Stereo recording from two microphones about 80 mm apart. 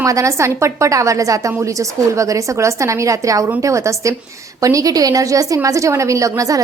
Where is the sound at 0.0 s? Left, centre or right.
Right.